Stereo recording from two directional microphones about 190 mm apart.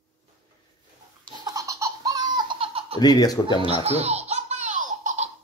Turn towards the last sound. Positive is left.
turn(degrees=-40)  # may be behind; listen again after turning